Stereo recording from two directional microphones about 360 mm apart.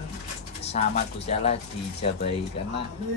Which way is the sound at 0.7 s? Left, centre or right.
Centre.